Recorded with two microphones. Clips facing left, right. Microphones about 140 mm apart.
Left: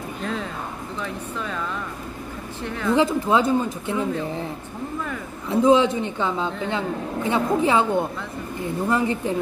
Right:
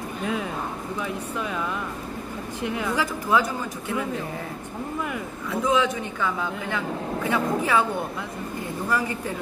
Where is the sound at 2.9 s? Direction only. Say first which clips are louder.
Left 6 dB; 25° left (ahead or behind).